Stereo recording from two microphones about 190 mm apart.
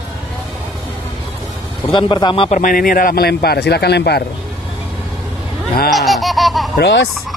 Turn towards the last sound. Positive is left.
turn(degrees=60)  # may be behind; listen again after turning